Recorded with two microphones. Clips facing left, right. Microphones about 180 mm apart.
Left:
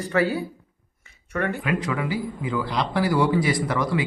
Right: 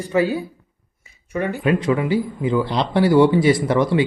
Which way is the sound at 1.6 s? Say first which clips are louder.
Right 7 dB; 25° right (ahead or behind).